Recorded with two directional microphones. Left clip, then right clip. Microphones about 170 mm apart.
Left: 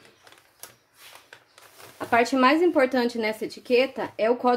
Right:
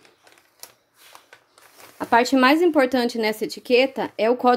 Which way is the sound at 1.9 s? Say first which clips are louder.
Right 4 dB; 55° right (ahead or behind).